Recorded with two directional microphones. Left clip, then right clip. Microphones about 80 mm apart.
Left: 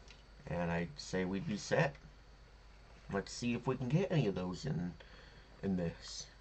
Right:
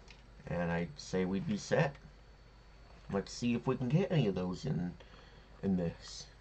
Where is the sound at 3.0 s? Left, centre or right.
Centre.